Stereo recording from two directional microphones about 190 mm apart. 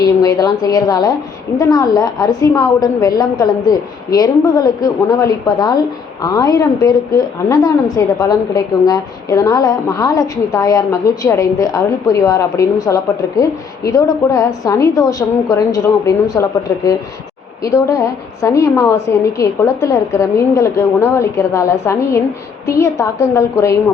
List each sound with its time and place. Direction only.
0.0 s a woman's voice: 20° left (ahead or behind)